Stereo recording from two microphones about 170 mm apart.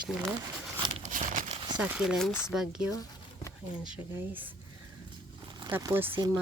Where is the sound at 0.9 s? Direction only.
45° right (ahead or behind).